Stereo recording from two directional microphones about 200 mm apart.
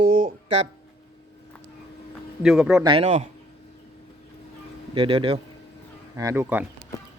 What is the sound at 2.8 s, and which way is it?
Speech, 30° right (ahead or behind).